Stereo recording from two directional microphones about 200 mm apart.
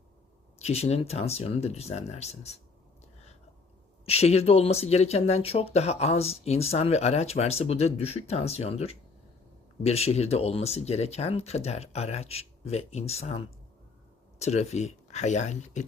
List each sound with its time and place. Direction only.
0.6 s speech: 30° left (ahead or behind)
4.0 s speech: 30° left (ahead or behind)